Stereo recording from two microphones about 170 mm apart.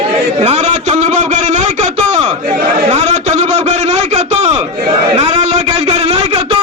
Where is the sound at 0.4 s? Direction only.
40° right (ahead or behind).